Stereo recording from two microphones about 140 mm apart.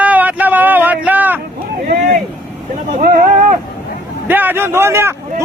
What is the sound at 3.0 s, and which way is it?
Speech, 90° right.